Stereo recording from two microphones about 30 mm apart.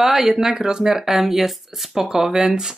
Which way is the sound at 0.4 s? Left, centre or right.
Centre.